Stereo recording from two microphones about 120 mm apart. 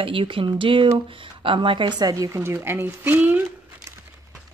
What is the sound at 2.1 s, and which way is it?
Speech, 25° right (ahead or behind).